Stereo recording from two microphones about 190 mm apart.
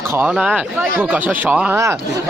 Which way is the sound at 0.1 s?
5° right (ahead or behind).